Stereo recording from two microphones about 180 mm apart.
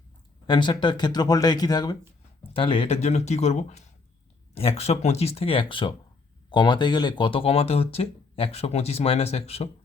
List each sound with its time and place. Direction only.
0.4 s speech: 25° left (ahead or behind)